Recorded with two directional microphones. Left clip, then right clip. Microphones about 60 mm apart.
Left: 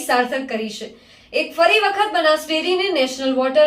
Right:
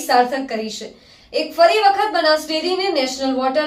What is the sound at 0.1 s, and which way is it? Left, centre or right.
Speech, centre.